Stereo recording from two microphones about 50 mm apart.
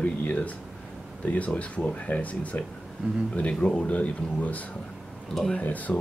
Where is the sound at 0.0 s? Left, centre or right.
Left.